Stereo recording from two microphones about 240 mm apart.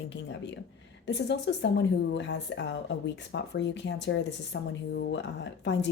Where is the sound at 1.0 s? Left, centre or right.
Left.